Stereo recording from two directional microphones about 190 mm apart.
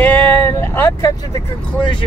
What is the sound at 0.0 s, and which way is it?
Vehicle, 10° left (ahead or behind).